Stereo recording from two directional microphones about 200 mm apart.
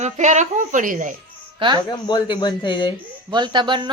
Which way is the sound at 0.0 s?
35° right (ahead or behind).